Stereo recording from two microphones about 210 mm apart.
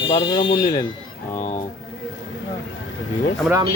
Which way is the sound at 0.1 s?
20° left (ahead or behind).